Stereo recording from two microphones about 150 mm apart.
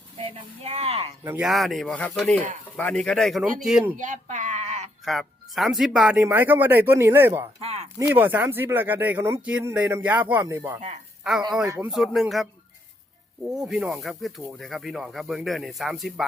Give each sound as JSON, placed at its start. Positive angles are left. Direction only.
{"t": 0.2, "sound": "speech", "side_deg": -35}
{"t": 1.4, "sound": "speech", "side_deg": 0}
{"t": 3.9, "sound": "sheep", "side_deg": -55}
{"t": 5.0, "sound": "speech", "side_deg": 0}
{"t": 7.6, "sound": "speech", "side_deg": -45}
{"t": 7.9, "sound": "speech", "side_deg": -15}
{"t": 11.2, "sound": "speech", "side_deg": -5}
{"t": 13.5, "sound": "speech", "side_deg": -5}